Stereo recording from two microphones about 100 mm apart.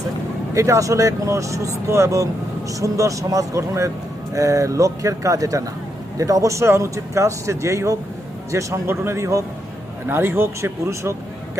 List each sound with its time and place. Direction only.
0.5 s a man's voice: 30° right (ahead or behind)